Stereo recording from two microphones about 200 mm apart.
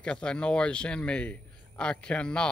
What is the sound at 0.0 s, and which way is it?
A man's voice, 5° left (ahead or behind).